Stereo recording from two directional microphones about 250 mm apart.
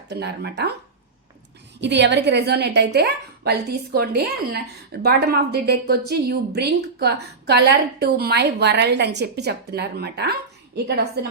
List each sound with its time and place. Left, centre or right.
0.1 s a woman's voice: right
1.8 s a woman's voice: right